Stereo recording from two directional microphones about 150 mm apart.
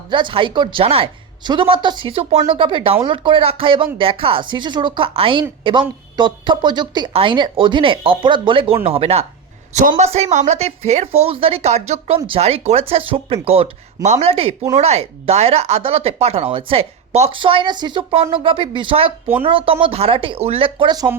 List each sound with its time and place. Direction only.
0.1 s a woman's voice: 30° right (ahead or behind)